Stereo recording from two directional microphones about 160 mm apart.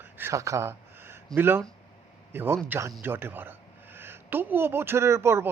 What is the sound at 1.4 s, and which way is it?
Speech, 15° right (ahead or behind).